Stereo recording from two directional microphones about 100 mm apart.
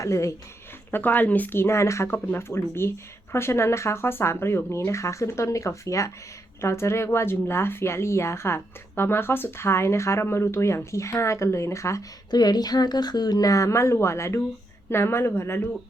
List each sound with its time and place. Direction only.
0.0 s speech: 30° left (ahead or behind)
0.9 s speech: 20° left (ahead or behind)
12.3 s speech: 45° left (ahead or behind); by 15.7 s 25° left (ahead or behind)